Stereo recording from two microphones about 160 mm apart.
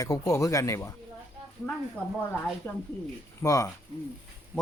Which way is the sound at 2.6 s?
15° left (ahead or behind).